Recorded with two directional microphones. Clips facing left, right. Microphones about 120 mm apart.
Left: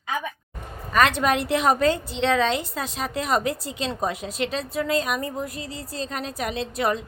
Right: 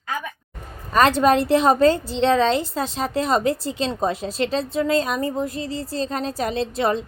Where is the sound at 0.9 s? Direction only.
30° right (ahead or behind).